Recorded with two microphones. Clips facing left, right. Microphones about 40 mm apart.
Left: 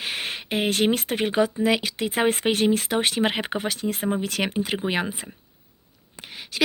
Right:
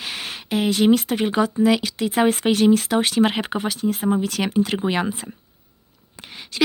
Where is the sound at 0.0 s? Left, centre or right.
Left.